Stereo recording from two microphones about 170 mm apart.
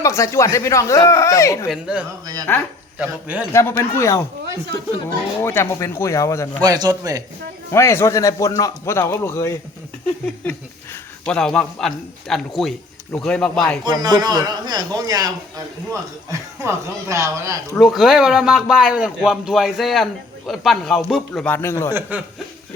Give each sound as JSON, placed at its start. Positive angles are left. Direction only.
{"t": 0.0, "sound": "a man's voice", "side_deg": 15}
{"t": 1.6, "sound": "speech", "side_deg": -5}
{"t": 2.5, "sound": "a man's voice", "side_deg": 15}
{"t": 3.0, "sound": "a man's voice", "side_deg": -10}
{"t": 3.5, "sound": "a man's voice", "side_deg": 15}
{"t": 6.6, "sound": "a man's voice", "side_deg": -25}
{"t": 7.7, "sound": "a man's voice", "side_deg": 15}
{"t": 11.3, "sound": "speech", "side_deg": 5}
{"t": 13.8, "sound": "a man's voice", "side_deg": -25}
{"t": 17.7, "sound": "a man's voice", "side_deg": 0}